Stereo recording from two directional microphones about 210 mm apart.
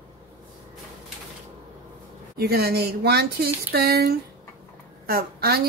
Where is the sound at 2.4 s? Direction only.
50° right (ahead or behind).